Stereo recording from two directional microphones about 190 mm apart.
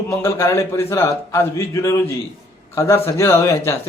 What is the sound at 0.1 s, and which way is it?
Speech, 15° left (ahead or behind).